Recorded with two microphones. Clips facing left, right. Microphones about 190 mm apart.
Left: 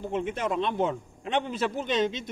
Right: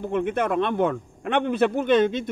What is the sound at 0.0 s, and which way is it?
A man's voice, 55° right (ahead or behind).